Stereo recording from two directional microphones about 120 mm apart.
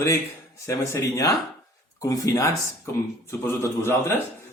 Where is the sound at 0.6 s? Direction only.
25° left (ahead or behind).